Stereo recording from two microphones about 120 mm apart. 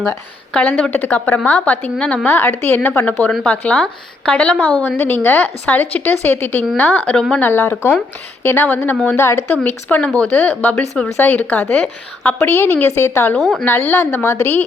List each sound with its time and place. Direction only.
0.5 s a woman's voice: 10° left (ahead or behind)
13.3 s a woman's voice: centre (ahead or behind)
13.7 s speech: 15° left (ahead or behind)